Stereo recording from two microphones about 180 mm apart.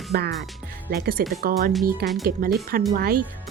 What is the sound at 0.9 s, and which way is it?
Speech, 55° right (ahead or behind).